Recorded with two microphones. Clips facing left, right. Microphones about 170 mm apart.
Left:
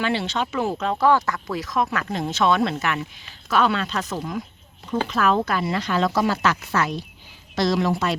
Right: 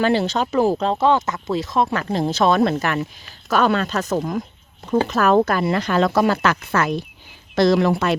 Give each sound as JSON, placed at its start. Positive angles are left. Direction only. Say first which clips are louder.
{"t": 0.0, "sound": "a woman's voice", "louder": "right 5 dB", "side_deg": -40}